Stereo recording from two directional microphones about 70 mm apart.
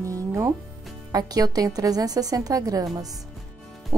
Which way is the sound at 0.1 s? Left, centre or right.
Right.